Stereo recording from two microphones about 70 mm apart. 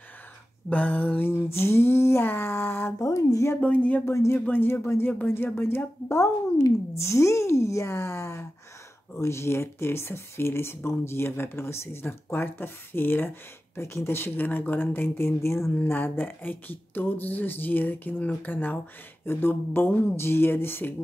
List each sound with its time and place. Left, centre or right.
0.7 s speech: left
1.5 s a sound: left
3.0 s speech: left
3.6 s speech: centre
4.0 s speech: left
4.5 s speech: left
15.7 s speech: left